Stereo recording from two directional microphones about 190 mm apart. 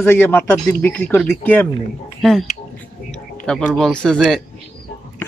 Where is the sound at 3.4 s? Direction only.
Centre (ahead or behind).